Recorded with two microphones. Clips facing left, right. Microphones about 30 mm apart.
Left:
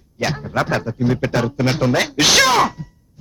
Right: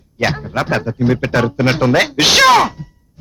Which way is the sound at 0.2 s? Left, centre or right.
Right.